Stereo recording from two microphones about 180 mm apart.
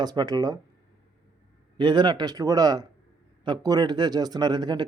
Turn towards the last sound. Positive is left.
turn(degrees=-25)  # may be behind; listen again after turning